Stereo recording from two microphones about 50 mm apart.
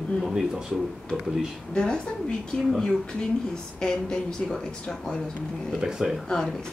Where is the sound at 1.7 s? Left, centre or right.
Centre.